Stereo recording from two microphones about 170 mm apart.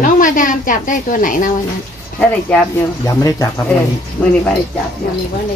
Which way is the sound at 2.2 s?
10° left (ahead or behind).